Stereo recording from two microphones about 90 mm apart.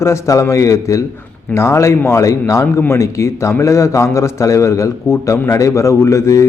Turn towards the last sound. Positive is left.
turn(degrees=35)  # may be behind; listen again after turning